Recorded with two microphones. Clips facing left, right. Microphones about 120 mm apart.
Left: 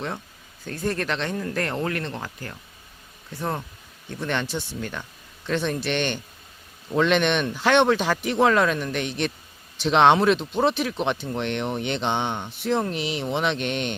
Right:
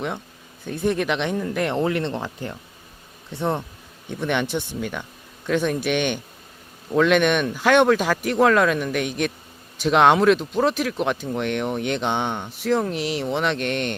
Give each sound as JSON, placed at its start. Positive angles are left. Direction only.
{"t": 0.6, "sound": "speech", "side_deg": -15}
{"t": 4.1, "sound": "speech", "side_deg": -15}